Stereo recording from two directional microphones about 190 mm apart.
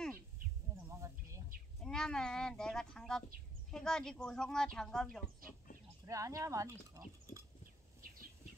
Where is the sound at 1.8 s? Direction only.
5° left (ahead or behind).